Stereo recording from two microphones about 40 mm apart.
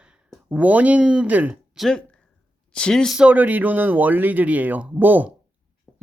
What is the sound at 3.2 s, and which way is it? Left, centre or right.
Speech, right.